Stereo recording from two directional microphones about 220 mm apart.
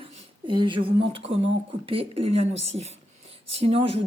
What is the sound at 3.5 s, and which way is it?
Speech, 25° right (ahead or behind).